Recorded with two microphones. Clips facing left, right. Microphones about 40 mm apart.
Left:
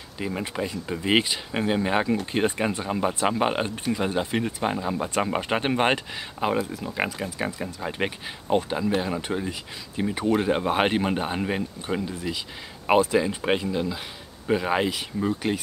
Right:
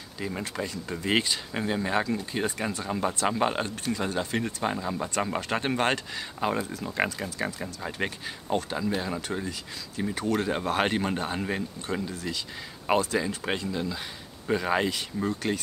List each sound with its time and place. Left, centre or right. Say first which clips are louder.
0.3 s speech: left 4 dB; centre